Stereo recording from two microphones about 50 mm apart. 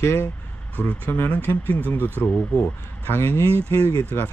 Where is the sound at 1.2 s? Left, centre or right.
Left.